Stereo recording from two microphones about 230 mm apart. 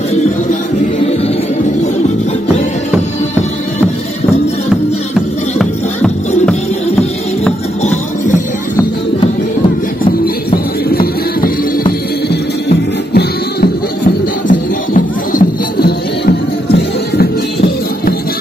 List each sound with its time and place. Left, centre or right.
5.1 s music: centre
7.8 s music: left
10.5 s music: left